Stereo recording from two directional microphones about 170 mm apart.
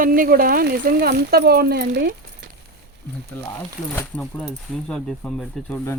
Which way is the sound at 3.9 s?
10° left (ahead or behind).